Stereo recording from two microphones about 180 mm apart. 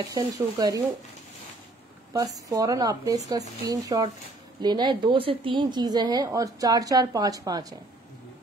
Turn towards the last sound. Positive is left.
turn(degrees=-20)  # may be behind; listen again after turning